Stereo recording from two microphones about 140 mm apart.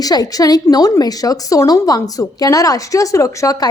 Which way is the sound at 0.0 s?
25° left (ahead or behind).